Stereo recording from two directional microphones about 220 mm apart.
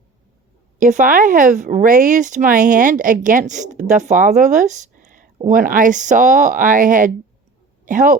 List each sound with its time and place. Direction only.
0.8 s speech: 35° right (ahead or behind)